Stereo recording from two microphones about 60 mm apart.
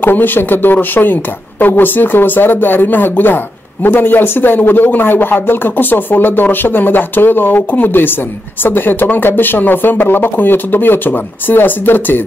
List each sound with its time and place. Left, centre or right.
0.0 s speech: left